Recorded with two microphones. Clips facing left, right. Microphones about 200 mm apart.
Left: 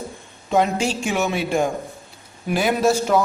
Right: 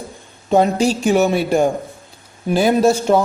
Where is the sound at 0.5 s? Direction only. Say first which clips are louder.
Right 5 dB; 35° right (ahead or behind).